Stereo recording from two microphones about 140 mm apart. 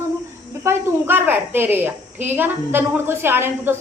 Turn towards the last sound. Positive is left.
turn(degrees=-15)  # may be behind; listen again after turning